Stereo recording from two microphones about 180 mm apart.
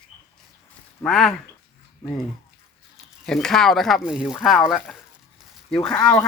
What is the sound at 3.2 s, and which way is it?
Speech, 5° left (ahead or behind).